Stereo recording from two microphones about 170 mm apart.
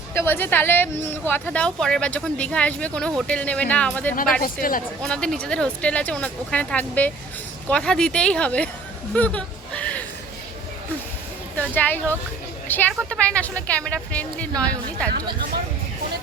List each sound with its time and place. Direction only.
0.1 s speech: 15° left (ahead or behind)
4.4 s speech: 55° left (ahead or behind)
5.0 s speech: 5° left (ahead or behind)
9.1 s a sound: 10° left (ahead or behind)
11.7 s speech: 10° left (ahead or behind)